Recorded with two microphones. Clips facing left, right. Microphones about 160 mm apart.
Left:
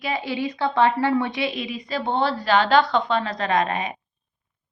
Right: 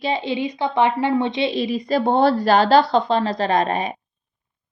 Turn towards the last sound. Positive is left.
turn(degrees=-35)  # may be behind; listen again after turning